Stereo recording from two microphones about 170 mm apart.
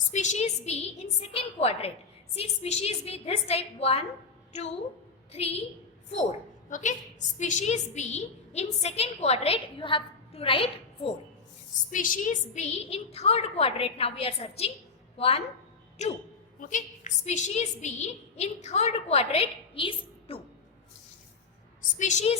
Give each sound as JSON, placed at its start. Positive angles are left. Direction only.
{"t": 0.1, "sound": "a woman's voice", "side_deg": 45}
{"t": 5.3, "sound": "a woman's voice", "side_deg": 35}
{"t": 6.7, "sound": "a woman's voice", "side_deg": 50}
{"t": 11.9, "sound": "a woman's voice", "side_deg": 50}
{"t": 21.8, "sound": "a woman's voice", "side_deg": 45}